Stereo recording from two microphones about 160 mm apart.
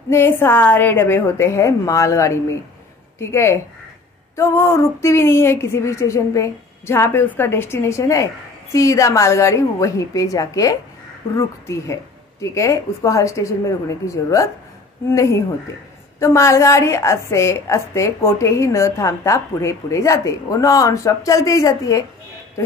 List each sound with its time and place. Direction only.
0.1 s a woman's voice: 15° left (ahead or behind)
16.2 s a woman's voice: 15° left (ahead or behind)